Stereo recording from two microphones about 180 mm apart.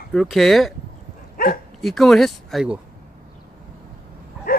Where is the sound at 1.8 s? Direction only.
Centre (ahead or behind).